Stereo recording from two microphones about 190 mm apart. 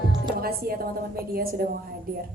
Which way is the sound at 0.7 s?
50° right (ahead or behind).